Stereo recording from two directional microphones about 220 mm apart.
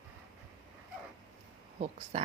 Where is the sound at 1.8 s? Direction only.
30° right (ahead or behind).